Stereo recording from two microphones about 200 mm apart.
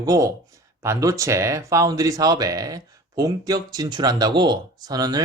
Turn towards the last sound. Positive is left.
turn(degrees=-20)  # may be behind; listen again after turning